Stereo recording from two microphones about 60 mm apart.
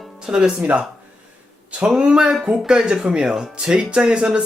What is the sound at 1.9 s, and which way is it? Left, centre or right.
Speech, centre.